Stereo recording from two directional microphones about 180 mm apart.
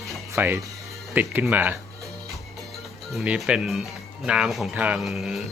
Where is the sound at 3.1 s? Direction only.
5° right (ahead or behind).